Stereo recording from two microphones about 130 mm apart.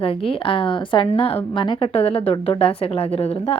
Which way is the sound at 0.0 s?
45° left (ahead or behind).